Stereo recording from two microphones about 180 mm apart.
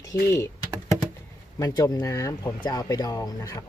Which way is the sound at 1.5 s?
20° left (ahead or behind).